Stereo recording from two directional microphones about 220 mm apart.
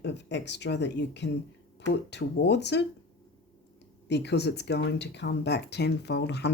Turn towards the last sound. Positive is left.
turn(degrees=50)  # may be behind; listen again after turning